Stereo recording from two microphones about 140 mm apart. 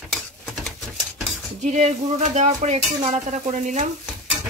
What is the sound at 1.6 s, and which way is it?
Speech, 55° right (ahead or behind).